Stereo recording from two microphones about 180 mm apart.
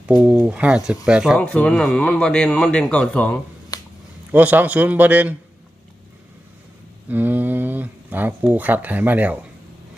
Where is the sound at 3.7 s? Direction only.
20° left (ahead or behind).